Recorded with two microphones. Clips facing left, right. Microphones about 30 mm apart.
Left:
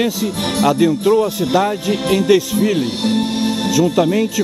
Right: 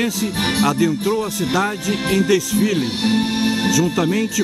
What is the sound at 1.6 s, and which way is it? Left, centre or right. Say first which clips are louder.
Speech: left 3 dB; centre.